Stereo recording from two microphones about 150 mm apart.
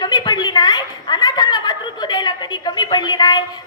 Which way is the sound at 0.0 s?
25° left (ahead or behind).